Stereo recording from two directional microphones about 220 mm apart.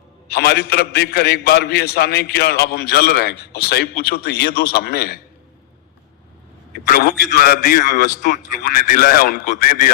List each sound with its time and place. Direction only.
0.3 s a man's voice: 45° left (ahead or behind)
6.8 s a man's voice: 45° left (ahead or behind)